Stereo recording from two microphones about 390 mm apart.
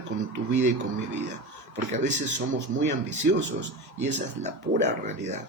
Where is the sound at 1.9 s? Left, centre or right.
Centre.